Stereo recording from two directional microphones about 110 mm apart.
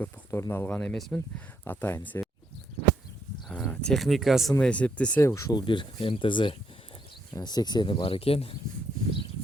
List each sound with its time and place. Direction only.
0.0 s speech: 25° left (ahead or behind)
0.7 s speech: 10° left (ahead or behind)
3.5 s speech: 10° left (ahead or behind)
4.6 s speech: 10° left (ahead or behind)
5.2 s speech: 30° left (ahead or behind)
5.6 s speech: 50° left (ahead or behind)
7.3 s speech: 40° left (ahead or behind); by 8.5 s 60° left (ahead or behind)